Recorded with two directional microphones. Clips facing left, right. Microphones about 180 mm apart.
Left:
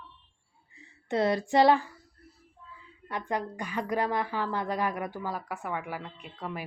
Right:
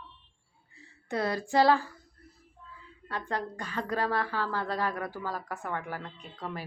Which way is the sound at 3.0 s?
15° left (ahead or behind).